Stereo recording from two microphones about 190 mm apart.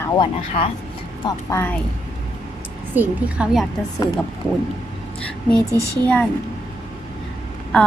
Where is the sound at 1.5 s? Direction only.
10° left (ahead or behind).